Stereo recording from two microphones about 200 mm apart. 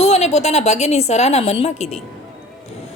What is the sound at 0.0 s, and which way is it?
A woman's voice, 35° left (ahead or behind).